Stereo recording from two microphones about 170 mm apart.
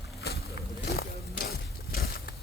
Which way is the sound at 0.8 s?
65° left (ahead or behind).